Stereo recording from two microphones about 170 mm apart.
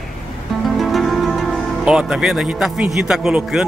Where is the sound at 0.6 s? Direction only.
Centre (ahead or behind).